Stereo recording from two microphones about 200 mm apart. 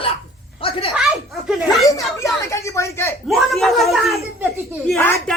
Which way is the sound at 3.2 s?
Centre (ahead or behind).